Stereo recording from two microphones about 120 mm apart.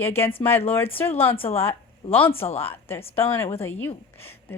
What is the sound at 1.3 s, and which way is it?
Speech, 50° left (ahead or behind).